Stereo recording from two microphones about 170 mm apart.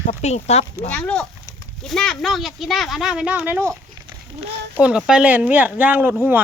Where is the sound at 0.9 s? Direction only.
5° left (ahead or behind); by 3.8 s 15° right (ahead or behind).